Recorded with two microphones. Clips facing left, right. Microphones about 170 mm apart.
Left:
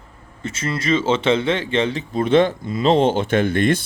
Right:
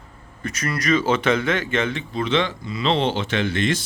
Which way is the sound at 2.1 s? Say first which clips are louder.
Left 9 dB; 50° left (ahead or behind).